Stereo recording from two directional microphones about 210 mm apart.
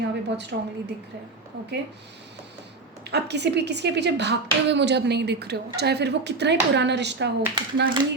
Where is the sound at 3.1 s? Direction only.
55° right (ahead or behind).